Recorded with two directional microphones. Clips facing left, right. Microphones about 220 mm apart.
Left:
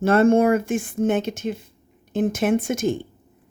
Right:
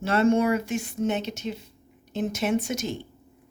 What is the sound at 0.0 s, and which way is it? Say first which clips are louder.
Speech: left 5 dB; 50° left (ahead or behind).